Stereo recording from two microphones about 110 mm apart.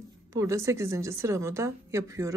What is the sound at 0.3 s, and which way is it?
A woman's voice, 25° right (ahead or behind).